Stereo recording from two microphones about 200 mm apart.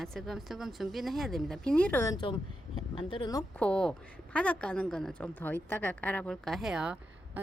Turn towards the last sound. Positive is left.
turn(degrees=-5)  # may be behind; listen again after turning